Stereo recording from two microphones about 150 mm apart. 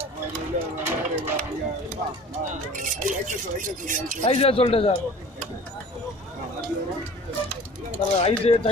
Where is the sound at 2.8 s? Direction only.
60° right (ahead or behind).